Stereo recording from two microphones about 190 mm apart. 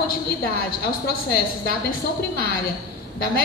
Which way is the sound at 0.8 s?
55° left (ahead or behind).